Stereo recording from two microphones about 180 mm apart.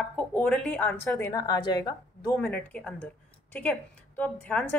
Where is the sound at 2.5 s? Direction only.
5° left (ahead or behind).